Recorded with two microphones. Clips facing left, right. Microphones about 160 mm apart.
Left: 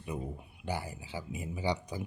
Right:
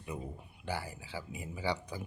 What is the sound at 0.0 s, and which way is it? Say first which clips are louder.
Speech: left 3 dB; 20° left (ahead or behind).